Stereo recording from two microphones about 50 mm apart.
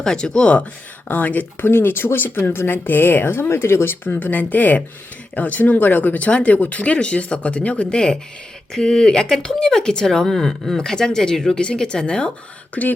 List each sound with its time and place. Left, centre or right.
0.0 s speech: centre
1.0 s speech: left
1.6 s speech: left
3.5 s speech: left
6.2 s speech: left
7.9 s speech: centre
12.8 s speech: left